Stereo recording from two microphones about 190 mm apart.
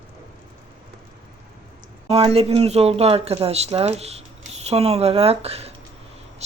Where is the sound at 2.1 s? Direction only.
30° right (ahead or behind).